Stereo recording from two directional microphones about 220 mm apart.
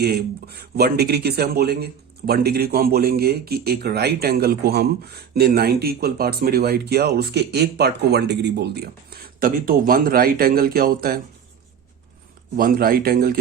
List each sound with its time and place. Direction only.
0.0 s speech: 45° right (ahead or behind)
12.5 s speech: 40° right (ahead or behind)